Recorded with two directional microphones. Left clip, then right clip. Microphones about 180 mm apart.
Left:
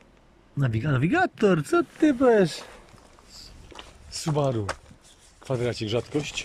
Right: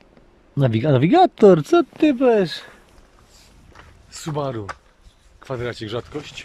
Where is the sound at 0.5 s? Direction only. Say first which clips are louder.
Right 10 dB; 25° right (ahead or behind); by 2.6 s centre (ahead or behind).